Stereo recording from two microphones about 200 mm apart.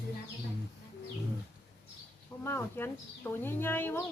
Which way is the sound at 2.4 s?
10° left (ahead or behind).